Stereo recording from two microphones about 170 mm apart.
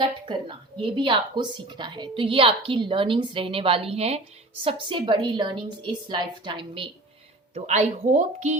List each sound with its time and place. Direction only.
0.3 s a woman's voice: 30° right (ahead or behind)
7.5 s speech: 40° right (ahead or behind)